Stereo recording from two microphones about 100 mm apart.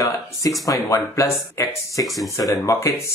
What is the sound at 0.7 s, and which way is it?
Speech, 30° left (ahead or behind).